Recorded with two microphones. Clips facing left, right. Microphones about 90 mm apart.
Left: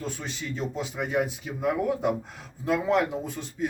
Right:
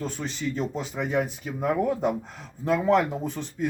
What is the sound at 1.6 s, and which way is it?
Speech, 40° right (ahead or behind).